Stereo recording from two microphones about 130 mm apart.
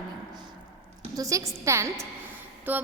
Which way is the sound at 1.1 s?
25° right (ahead or behind).